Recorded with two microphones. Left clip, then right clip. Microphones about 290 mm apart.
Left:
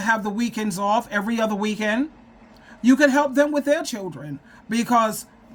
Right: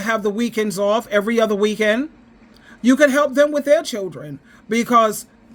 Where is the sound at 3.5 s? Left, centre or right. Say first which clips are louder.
Right 5 dB; left.